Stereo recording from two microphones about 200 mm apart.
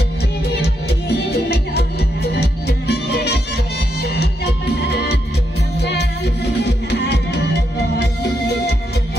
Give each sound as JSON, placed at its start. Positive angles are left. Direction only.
{"t": 0.6, "sound": "music", "side_deg": 55}